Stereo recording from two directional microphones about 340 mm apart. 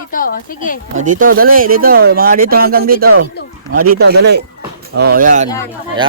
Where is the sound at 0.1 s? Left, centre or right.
Left.